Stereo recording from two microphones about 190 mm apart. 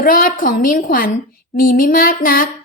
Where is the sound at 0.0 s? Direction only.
45° left (ahead or behind).